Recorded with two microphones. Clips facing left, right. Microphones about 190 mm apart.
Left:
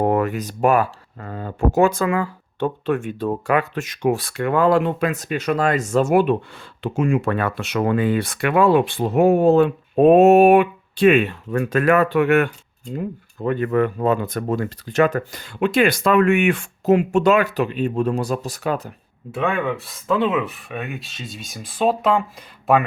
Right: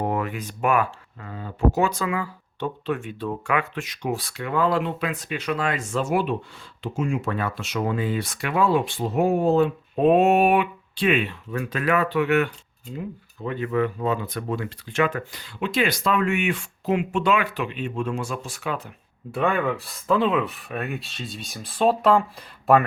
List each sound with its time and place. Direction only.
0.0 s speech: 50° left (ahead or behind)
1.3 s speech: 50° left (ahead or behind)
6.8 s speech: 65° left (ahead or behind); by 18.9 s 40° left (ahead or behind)
19.3 s speech: centre (ahead or behind)